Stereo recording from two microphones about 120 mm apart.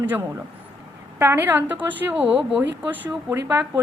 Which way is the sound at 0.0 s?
15° right (ahead or behind).